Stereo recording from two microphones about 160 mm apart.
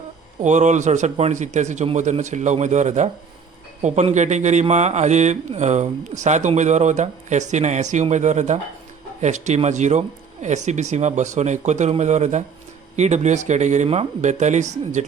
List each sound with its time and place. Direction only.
0.4 s speech: 50° right (ahead or behind)